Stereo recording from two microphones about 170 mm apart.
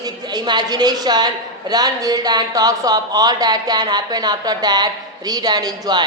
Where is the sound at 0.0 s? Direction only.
25° right (ahead or behind).